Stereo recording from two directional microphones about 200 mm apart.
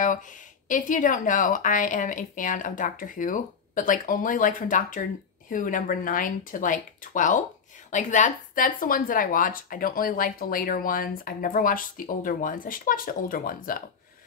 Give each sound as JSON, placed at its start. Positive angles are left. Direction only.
{"t": 0.7, "sound": "a woman's voice", "side_deg": 40}